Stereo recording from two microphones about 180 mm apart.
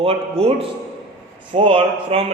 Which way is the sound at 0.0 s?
35° right (ahead or behind).